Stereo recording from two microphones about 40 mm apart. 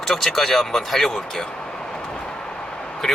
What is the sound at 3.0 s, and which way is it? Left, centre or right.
Vehicle, centre.